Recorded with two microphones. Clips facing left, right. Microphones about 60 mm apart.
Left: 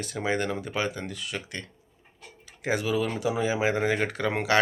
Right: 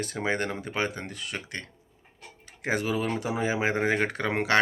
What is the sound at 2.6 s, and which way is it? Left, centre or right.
Speech, right.